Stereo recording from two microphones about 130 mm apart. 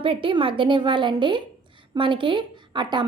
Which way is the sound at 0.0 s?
45° right (ahead or behind).